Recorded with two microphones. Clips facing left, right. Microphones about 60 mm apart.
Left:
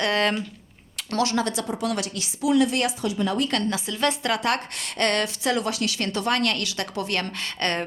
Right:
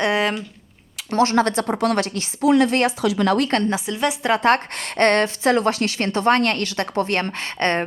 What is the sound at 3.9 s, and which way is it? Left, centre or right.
Speech, centre.